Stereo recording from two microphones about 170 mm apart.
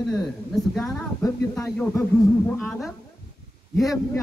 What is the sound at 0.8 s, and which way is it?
A woman's voice, 20° left (ahead or behind).